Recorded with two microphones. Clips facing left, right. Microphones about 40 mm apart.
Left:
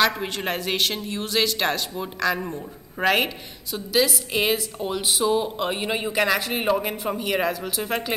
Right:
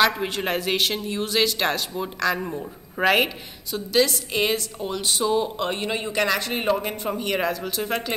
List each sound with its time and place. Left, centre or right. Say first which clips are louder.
0.0 s a woman's voice: right 1 dB; centre